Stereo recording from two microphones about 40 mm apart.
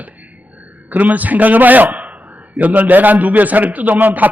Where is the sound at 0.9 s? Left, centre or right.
Right.